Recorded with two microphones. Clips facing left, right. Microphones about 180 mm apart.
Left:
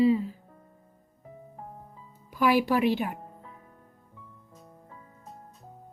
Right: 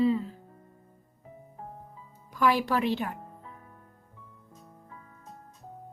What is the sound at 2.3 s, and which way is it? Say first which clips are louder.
Speech: left 2 dB; 10° left (ahead or behind).